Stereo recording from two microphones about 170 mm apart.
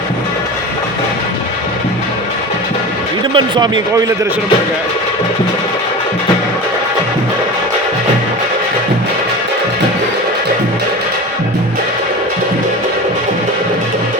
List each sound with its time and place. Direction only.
3.3 s speech: 25° right (ahead or behind)